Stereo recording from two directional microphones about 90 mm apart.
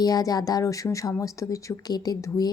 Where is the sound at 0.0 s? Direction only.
45° left (ahead or behind).